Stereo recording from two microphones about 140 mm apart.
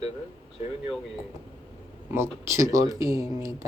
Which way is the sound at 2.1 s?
20° right (ahead or behind).